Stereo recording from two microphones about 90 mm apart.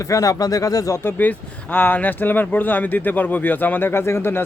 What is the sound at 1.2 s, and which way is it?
Speech, 20° left (ahead or behind).